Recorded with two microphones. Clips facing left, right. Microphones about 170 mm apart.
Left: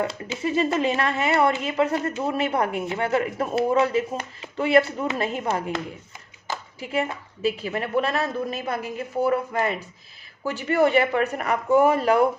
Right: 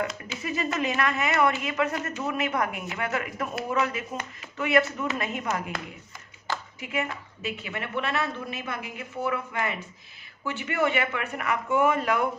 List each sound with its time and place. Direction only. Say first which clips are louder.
0.0 s a woman's voice: left 5 dB; 30° left (ahead or behind)